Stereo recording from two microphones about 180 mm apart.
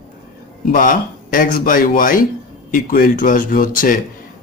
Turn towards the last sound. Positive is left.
turn(degrees=50)  # may be behind; listen again after turning